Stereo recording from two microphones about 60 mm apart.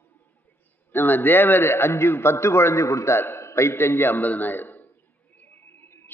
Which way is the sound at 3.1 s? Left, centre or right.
Left.